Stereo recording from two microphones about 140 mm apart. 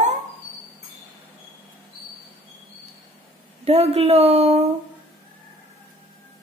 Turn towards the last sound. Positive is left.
turn(degrees=-50)  # may be behind; listen again after turning